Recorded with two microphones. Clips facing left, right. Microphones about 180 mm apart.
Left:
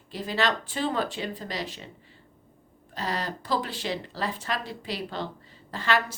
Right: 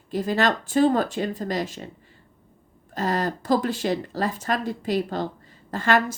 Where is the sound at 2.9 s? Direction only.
45° right (ahead or behind).